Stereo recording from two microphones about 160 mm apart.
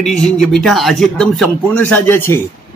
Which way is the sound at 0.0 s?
5° left (ahead or behind).